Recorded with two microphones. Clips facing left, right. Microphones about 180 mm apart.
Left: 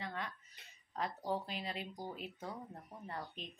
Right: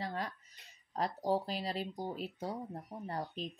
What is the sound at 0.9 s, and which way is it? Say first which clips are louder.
Speech: right 6 dB; 35° right (ahead or behind).